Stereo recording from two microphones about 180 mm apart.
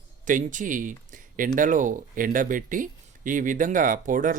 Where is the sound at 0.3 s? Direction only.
45° right (ahead or behind).